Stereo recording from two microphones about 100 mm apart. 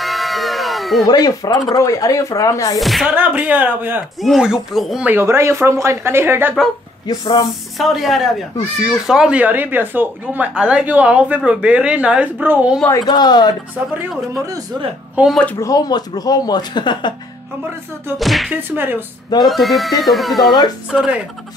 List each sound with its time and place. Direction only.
0.0 s a sound: centre (ahead or behind)
1.0 s speech: 40° left (ahead or behind)
2.8 s speech: centre (ahead or behind)
3.1 s speech: 15° right (ahead or behind)
4.2 s speech: 5° right (ahead or behind)
5.2 s speech: 30° right (ahead or behind)
7.1 s speech: 45° left (ahead or behind)
7.7 s speech: centre (ahead or behind); by 12.7 s 15° right (ahead or behind)
12.9 s speech: 45° left (ahead or behind)
15.2 s speech: 15° right (ahead or behind)
15.5 s speech: 40° left (ahead or behind)
18.2 s speech: centre (ahead or behind)
18.8 s speech: 20° right (ahead or behind)
19.5 s speech: centre (ahead or behind)